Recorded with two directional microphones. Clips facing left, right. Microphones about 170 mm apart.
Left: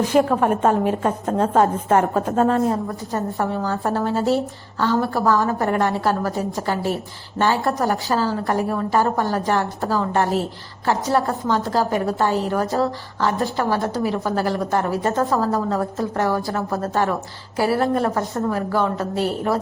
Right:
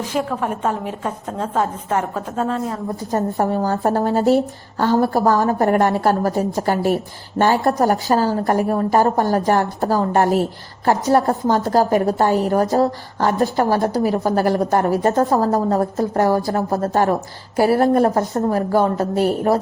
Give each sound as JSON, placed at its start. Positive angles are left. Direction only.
{"t": 0.1, "sound": "a woman's voice", "side_deg": 50}
{"t": 3.1, "sound": "a woman's voice", "side_deg": -40}